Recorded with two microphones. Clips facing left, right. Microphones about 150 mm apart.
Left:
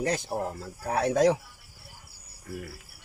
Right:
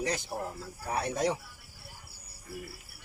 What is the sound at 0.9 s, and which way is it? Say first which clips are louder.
Speech: left 7 dB; 90° left.